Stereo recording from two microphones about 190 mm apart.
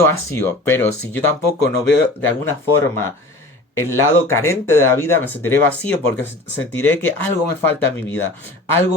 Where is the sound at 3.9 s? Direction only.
15° left (ahead or behind).